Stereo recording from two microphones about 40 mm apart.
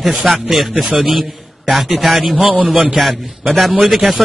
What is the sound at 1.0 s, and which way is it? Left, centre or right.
Speech, centre.